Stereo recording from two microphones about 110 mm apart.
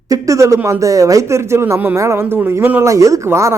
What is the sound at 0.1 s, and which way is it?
Speech, 30° right (ahead or behind).